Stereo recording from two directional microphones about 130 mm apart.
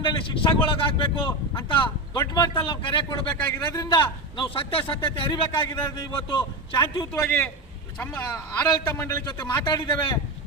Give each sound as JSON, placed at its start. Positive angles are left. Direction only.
{"t": 0.0, "sound": "speech", "side_deg": 40}
{"t": 2.5, "sound": "speech", "side_deg": 40}
{"t": 3.2, "sound": "a man's voice", "side_deg": 20}
{"t": 3.8, "sound": "speech", "side_deg": 35}
{"t": 7.1, "sound": "a man's voice", "side_deg": 15}
{"t": 9.9, "sound": "speech", "side_deg": 40}